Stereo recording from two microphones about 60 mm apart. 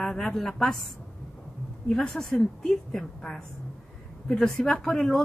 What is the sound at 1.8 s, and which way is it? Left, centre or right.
A woman's voice, centre.